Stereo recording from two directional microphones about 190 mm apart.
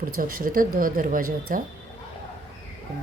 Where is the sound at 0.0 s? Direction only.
45° right (ahead or behind).